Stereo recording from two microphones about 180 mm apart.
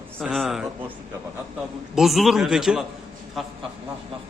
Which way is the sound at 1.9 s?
Centre (ahead or behind).